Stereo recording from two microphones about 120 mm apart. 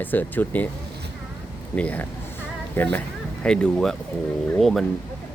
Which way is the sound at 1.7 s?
15° left (ahead or behind).